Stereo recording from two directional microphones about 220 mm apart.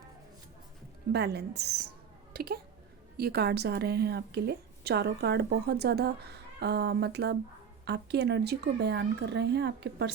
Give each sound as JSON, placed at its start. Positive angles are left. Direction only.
{"t": 1.1, "sound": "a woman's voice", "side_deg": -50}